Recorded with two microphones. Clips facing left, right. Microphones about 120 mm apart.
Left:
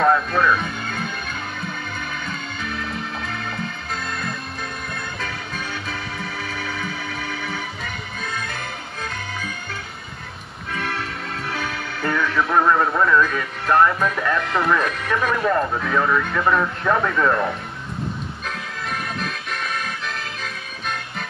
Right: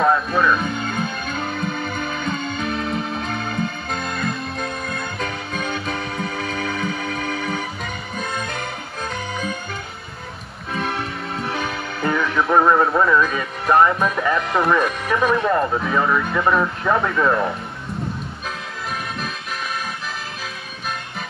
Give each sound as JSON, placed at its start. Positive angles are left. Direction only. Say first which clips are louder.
{"t": 0.0, "sound": "music", "louder": "even", "side_deg": -5}
{"t": 2.2, "sound": "music", "louder": "right 6 dB", "side_deg": -25}
{"t": 5.2, "sound": "music", "louder": "right 4 dB", "side_deg": -25}
{"t": 10.7, "sound": "music", "louder": "right 3 dB", "side_deg": -20}
{"t": 19.1, "sound": "music", "louder": "even", "side_deg": -5}